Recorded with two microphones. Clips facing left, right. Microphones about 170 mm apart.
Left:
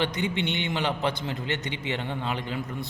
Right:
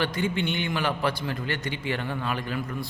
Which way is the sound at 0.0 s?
20° left (ahead or behind).